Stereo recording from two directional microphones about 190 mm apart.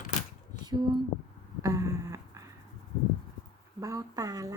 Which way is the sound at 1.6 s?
15° right (ahead or behind).